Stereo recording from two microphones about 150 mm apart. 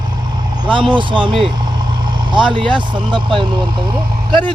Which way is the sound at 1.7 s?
30° right (ahead or behind).